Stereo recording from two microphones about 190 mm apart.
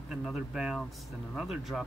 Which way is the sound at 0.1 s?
5° right (ahead or behind).